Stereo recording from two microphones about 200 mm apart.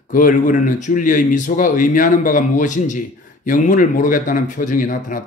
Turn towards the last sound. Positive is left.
turn(degrees=40)  # may be behind; listen again after turning